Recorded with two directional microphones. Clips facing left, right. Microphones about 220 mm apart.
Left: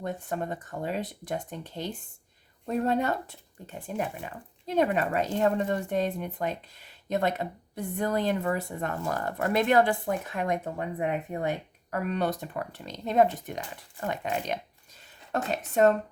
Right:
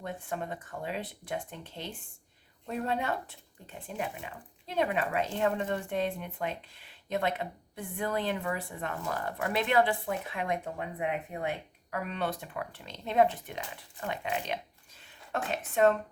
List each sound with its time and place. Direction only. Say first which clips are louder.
0.0 s speech: left 4 dB; 40° left (ahead or behind)